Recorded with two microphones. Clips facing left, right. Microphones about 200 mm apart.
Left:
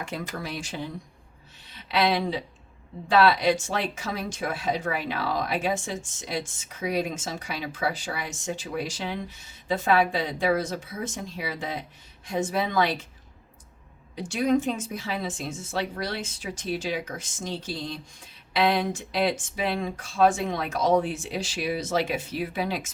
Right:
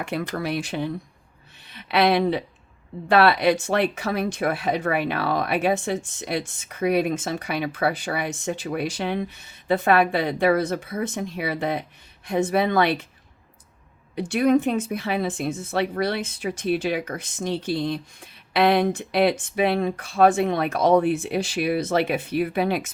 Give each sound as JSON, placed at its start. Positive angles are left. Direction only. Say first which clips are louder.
{"t": 0.0, "sound": "speech", "louder": "right 6 dB", "side_deg": -65}
{"t": 14.2, "sound": "speech", "louder": "right 4 dB", "side_deg": -60}